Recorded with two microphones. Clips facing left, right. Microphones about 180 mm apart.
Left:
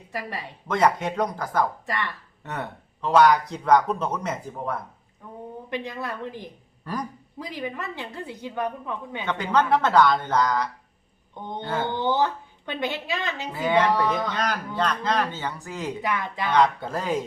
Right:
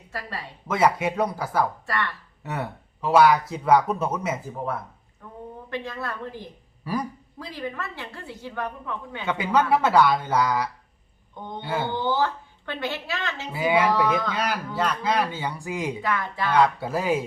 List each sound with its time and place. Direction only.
0.1 s a woman's voice: 15° left (ahead or behind)
0.7 s speech: 10° right (ahead or behind)
1.9 s a woman's voice: 20° left (ahead or behind)
2.4 s speech: 10° right (ahead or behind)
5.7 s a woman's voice: 15° left (ahead or behind)
6.8 s speech: 10° right (ahead or behind)
7.3 s a woman's voice: 15° left (ahead or behind)
9.2 s speech: 10° right (ahead or behind)
11.9 s a woman's voice: 20° left (ahead or behind)
13.5 s speech: 10° right (ahead or behind)
16.0 s a woman's voice: 15° left (ahead or behind)
16.5 s speech: 10° right (ahead or behind)